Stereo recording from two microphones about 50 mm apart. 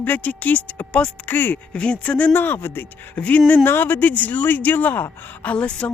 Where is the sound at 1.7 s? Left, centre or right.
Left.